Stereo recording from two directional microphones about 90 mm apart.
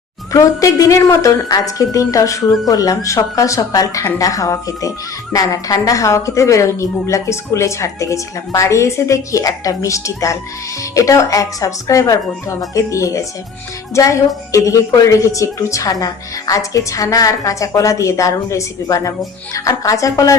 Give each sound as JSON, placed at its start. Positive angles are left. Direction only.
{"t": 0.3, "sound": "a woman's voice", "side_deg": 40}